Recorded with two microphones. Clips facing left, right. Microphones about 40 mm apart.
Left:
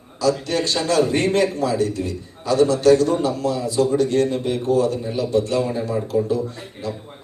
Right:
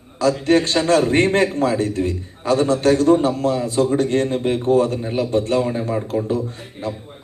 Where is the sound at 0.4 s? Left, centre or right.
Right.